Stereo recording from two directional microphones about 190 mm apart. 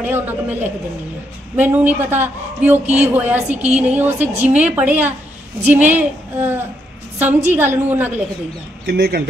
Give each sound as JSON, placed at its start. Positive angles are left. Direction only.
{"t": 0.0, "sound": "a woman's voice", "side_deg": -10}
{"t": 8.8, "sound": "speech", "side_deg": -55}